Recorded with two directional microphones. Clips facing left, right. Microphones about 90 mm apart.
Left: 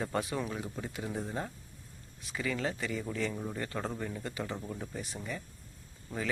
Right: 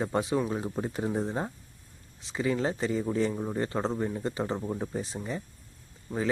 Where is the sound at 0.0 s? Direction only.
20° right (ahead or behind).